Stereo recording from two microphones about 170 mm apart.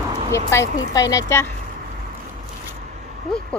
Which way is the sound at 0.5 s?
15° left (ahead or behind).